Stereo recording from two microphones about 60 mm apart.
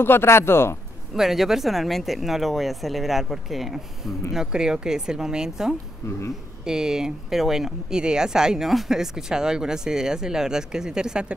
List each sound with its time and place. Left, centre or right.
0.0 s speech: left
1.1 s speech: centre